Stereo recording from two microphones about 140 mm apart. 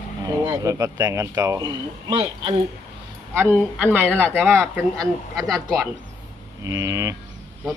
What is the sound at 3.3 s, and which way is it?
Speech, 15° right (ahead or behind).